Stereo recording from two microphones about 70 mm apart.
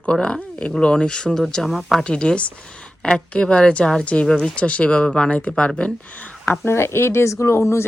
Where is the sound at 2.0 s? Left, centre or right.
Centre.